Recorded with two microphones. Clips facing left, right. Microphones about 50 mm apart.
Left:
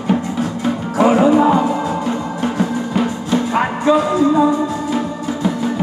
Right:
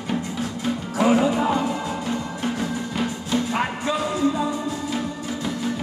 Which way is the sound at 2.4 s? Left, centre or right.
Left.